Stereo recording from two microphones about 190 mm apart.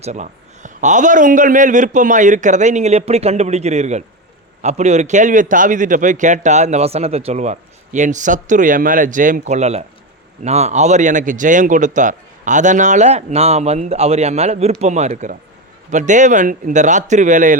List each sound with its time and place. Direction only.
0.0 s a man's voice: 40° right (ahead or behind)